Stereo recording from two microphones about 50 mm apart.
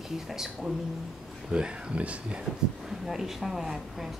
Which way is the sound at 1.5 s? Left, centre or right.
Centre.